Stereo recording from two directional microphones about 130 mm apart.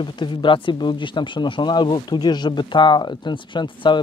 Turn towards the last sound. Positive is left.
turn(degrees=35)  # may be behind; listen again after turning